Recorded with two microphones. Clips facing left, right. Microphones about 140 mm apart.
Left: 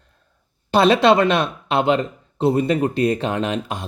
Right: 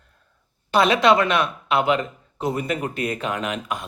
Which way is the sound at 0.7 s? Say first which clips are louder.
Left 3 dB; 30° left (ahead or behind).